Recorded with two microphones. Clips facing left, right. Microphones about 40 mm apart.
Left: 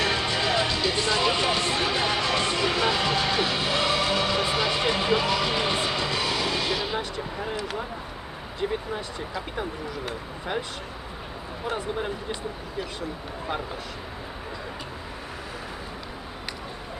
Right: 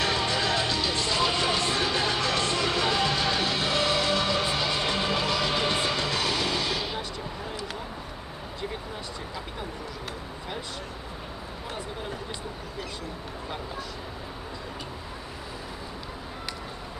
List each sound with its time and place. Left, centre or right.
0.0 s music: left
1.0 s vehicle: left
1.4 s music: left
4.7 s a sound: left
4.9 s music: left
6.6 s music: left